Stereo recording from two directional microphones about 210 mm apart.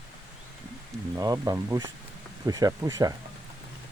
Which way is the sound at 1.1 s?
15° right (ahead or behind).